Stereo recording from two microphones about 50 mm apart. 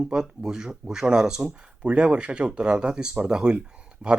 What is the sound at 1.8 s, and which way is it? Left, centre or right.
Speech, right.